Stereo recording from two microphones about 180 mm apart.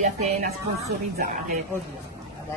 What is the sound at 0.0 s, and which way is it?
Speech, 40° right (ahead or behind).